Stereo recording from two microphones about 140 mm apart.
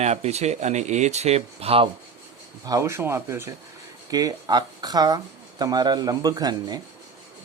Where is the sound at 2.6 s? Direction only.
20° right (ahead or behind).